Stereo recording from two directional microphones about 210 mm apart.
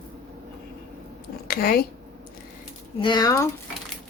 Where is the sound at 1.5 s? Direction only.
45° left (ahead or behind).